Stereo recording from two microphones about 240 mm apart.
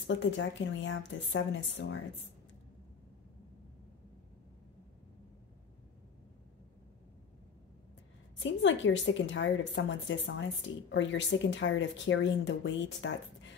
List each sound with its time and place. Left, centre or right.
0.0 s speech: left
8.4 s speech: left